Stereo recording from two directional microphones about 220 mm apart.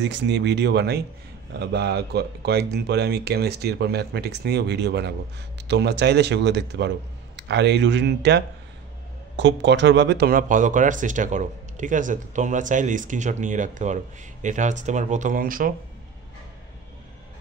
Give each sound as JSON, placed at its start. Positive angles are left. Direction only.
{"t": 0.0, "sound": "speech", "side_deg": -55}